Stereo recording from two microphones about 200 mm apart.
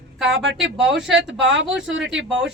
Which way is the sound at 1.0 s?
Centre (ahead or behind).